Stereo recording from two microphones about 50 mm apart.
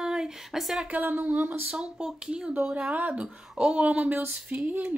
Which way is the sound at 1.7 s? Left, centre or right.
Centre.